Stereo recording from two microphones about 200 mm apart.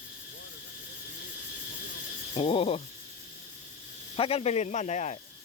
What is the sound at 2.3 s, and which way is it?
Speech, 25° left (ahead or behind).